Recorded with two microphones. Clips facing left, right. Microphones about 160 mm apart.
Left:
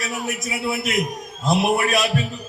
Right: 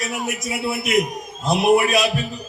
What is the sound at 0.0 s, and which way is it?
A man's voice, centre (ahead or behind).